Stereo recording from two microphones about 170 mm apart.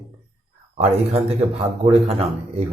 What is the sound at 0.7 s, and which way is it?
Speech, 40° right (ahead or behind).